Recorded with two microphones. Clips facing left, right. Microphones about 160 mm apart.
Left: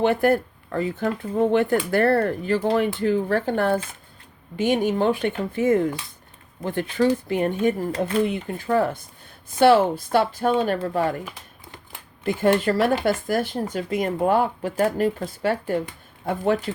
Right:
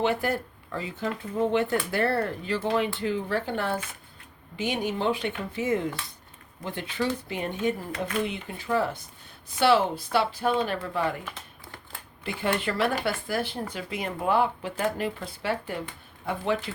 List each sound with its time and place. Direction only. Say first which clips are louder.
0.0 s speech: left 7 dB; 50° left (ahead or behind)
12.2 s speech: left 8 dB; 45° left (ahead or behind)